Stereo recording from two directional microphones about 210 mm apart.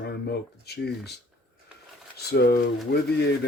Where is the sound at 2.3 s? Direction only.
50° left (ahead or behind).